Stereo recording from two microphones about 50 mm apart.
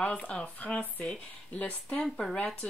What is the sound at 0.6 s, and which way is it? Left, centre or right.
Speech, left.